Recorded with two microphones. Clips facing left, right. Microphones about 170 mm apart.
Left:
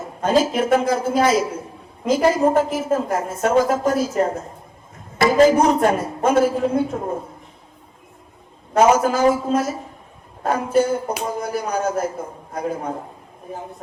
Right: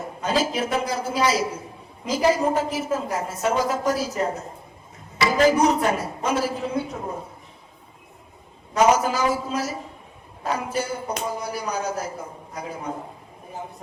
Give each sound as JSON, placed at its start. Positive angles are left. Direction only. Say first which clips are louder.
{"t": 0.2, "sound": "a man's voice", "louder": "left 6 dB", "side_deg": 50}
{"t": 8.7, "sound": "a man's voice", "louder": "left 4 dB", "side_deg": 50}